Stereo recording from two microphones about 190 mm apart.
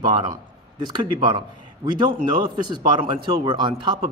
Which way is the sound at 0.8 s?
25° right (ahead or behind).